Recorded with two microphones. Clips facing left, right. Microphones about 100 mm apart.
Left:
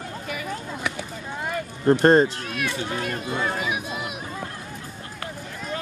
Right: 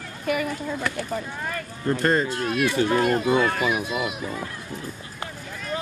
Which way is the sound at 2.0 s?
35° left (ahead or behind).